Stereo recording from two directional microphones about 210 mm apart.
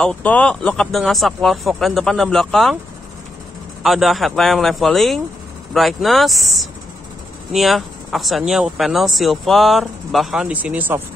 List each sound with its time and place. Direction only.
0.0 s speech: 5° left (ahead or behind)
3.8 s speech: centre (ahead or behind)